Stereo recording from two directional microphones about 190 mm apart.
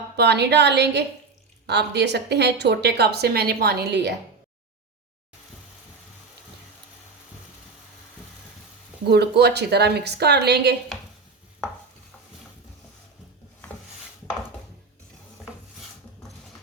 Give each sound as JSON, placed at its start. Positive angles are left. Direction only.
{"t": 0.2, "sound": "speech", "side_deg": -60}
{"t": 9.0, "sound": "speech", "side_deg": -60}